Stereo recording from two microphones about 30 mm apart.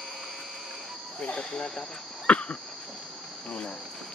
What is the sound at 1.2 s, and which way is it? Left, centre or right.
Cricket, left.